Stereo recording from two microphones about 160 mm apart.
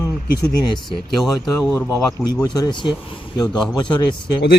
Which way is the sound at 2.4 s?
25° left (ahead or behind).